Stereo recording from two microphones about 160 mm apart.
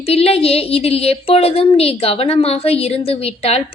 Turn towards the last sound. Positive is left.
turn(degrees=40)  # may be behind; listen again after turning